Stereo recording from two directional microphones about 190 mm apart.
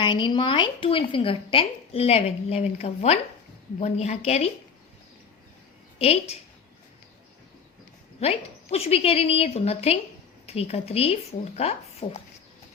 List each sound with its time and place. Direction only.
0.0 s a woman's voice: 25° left (ahead or behind)
8.2 s speech: 30° left (ahead or behind)